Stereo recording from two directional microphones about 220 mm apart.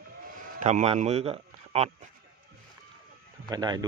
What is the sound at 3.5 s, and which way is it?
Speech, 20° right (ahead or behind).